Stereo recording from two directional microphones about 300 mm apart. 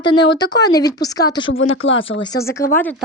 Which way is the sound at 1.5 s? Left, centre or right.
Left.